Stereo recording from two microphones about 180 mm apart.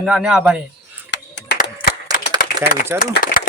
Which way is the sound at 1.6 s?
50° left (ahead or behind).